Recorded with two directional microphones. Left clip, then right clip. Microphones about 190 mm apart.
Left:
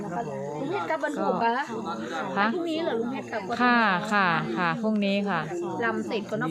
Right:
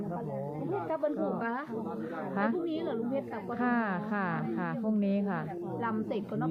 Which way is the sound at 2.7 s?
50° right (ahead or behind).